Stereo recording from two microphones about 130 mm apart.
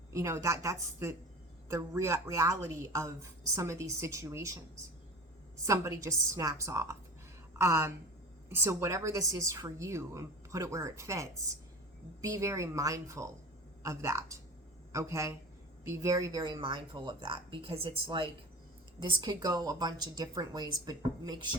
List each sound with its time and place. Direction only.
0.1 s a woman's voice: 25° right (ahead or behind)
5.6 s a woman's voice: 25° right (ahead or behind)